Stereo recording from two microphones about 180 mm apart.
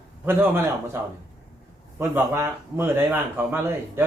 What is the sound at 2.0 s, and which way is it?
A man's voice, 15° right (ahead or behind).